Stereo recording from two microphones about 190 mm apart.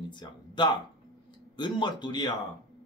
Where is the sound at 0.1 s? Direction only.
25° left (ahead or behind).